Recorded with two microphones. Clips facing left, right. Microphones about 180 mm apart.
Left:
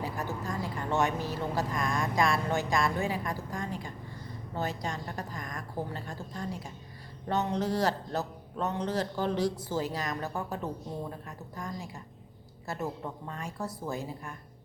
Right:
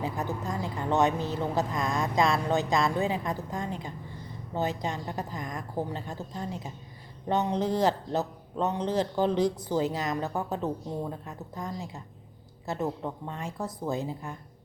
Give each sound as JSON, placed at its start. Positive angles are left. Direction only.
{"t": 0.0, "sound": "speech", "side_deg": -20}